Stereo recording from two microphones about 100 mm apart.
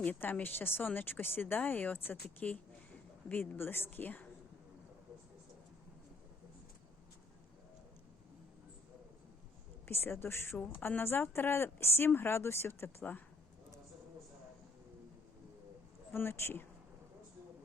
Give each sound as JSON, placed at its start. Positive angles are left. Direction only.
{"t": 0.0, "sound": "speech", "side_deg": 15}
{"t": 9.8, "sound": "speech", "side_deg": 25}
{"t": 16.1, "sound": "speech", "side_deg": 25}